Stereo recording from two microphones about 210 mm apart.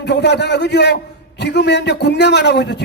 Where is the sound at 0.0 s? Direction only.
55° left (ahead or behind).